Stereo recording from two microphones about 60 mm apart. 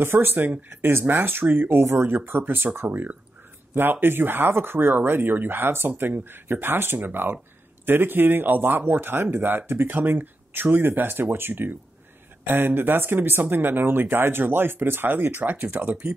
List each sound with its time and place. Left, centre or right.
0.0 s speech: right